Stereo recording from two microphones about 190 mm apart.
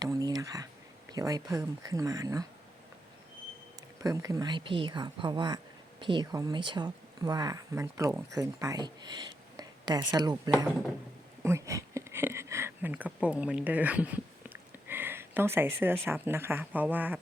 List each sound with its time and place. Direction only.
0.0 s a sound: 20° right (ahead or behind)
1.1 s speech: 20° right (ahead or behind)
4.0 s speech: 15° right (ahead or behind)